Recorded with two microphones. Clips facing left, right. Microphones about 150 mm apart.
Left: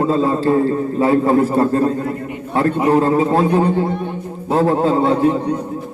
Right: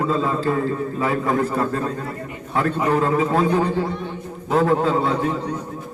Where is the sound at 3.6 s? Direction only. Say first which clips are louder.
Left 5 dB; 55° left (ahead or behind).